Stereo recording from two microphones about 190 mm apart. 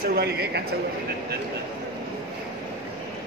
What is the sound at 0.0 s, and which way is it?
Speech, 55° right (ahead or behind).